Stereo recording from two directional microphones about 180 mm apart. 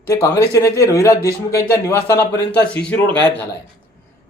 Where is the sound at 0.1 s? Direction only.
20° left (ahead or behind).